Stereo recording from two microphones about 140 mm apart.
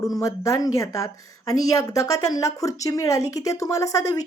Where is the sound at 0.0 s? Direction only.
25° left (ahead or behind).